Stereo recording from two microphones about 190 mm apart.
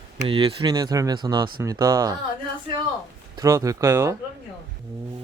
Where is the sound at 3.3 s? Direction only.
20° right (ahead or behind).